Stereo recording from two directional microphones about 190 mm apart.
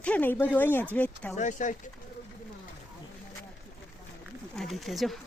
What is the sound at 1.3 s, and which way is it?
Speech, 40° left (ahead or behind).